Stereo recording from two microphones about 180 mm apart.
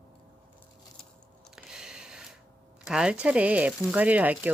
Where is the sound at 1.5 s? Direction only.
5° right (ahead or behind).